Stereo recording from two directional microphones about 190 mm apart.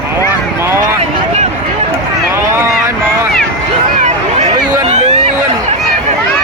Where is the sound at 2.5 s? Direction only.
15° right (ahead or behind).